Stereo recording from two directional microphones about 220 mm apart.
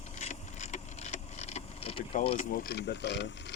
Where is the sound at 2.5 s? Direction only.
45° left (ahead or behind).